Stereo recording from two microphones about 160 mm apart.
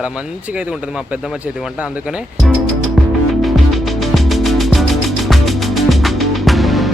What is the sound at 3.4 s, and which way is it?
Music, centre (ahead or behind).